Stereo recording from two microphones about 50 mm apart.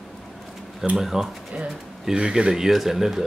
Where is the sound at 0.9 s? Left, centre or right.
Centre.